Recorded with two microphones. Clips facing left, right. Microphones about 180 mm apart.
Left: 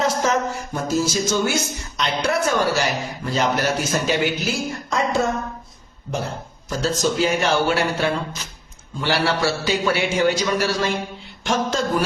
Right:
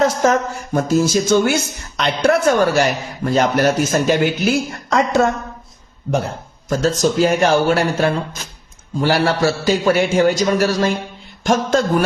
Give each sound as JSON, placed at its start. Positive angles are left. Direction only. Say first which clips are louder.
{"t": 0.0, "sound": "speech", "louder": "right 5 dB", "side_deg": -50}
{"t": 4.9, "sound": "a woman's voice", "louder": "right 6 dB", "side_deg": -70}
{"t": 6.7, "sound": "a man's voice", "louder": "right 5 dB", "side_deg": -45}